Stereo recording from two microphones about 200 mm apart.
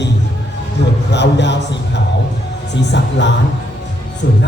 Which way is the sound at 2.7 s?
60° left (ahead or behind).